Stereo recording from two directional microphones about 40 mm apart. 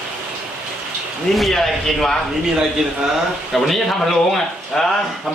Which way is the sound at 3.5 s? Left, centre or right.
Centre.